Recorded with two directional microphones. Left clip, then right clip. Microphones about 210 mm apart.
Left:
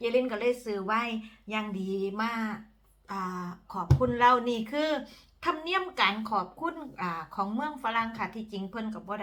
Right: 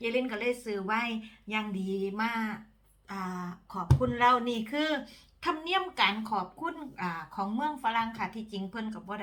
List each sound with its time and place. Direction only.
0.0 s a woman's voice: centre (ahead or behind)